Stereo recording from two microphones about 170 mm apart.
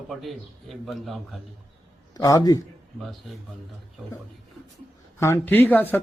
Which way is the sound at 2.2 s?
20° left (ahead or behind).